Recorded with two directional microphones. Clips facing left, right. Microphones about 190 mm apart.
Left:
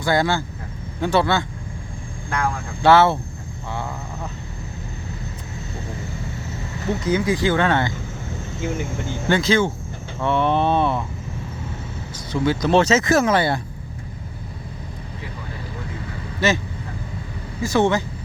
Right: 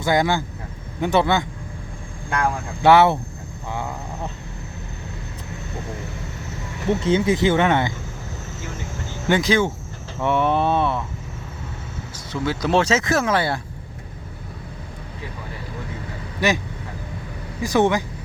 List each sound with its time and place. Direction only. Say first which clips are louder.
0.0 s speech: even; 15° right (ahead or behind)
2.8 s speech: even; 15° right (ahead or behind)
3.7 s a sound: right 1 dB; 15° right (ahead or behind)
7.0 s speech: right 1 dB; 25° right (ahead or behind)
9.3 s speech: even; 15° right (ahead or behind)
12.3 s speech: left 3 dB; centre (ahead or behind)
16.4 s speech: left 1 dB; 15° right (ahead or behind)
17.6 s speech: even; 15° right (ahead or behind)